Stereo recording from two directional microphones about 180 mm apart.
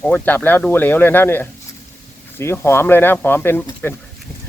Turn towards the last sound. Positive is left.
turn(degrees=10)  # may be behind; listen again after turning